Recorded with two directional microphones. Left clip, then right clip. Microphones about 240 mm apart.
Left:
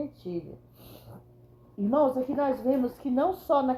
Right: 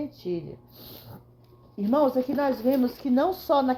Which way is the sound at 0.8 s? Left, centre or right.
Right.